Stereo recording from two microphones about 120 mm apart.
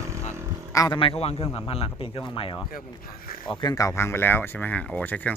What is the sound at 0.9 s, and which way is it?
Speech, 50° left (ahead or behind).